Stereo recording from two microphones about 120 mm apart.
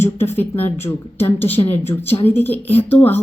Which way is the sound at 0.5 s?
60° left (ahead or behind).